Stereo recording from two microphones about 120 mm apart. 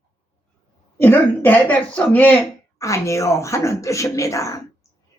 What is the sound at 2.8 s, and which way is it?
A woman's voice, 25° left (ahead or behind).